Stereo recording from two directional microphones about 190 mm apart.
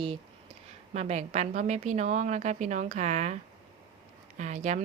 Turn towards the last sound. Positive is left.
turn(degrees=-40)  # may be behind; listen again after turning